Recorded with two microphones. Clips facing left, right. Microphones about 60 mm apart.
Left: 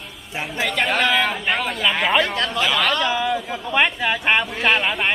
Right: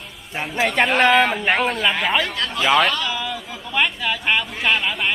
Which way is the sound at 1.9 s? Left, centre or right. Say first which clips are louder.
Left 2 dB; centre.